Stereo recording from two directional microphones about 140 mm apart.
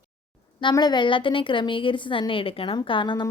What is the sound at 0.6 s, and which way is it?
A woman's voice, 30° left (ahead or behind).